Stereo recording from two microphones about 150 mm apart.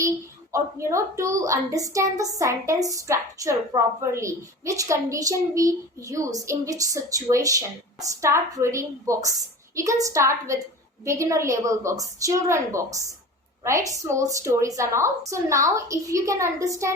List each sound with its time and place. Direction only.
0.5 s a woman's voice: 20° right (ahead or behind)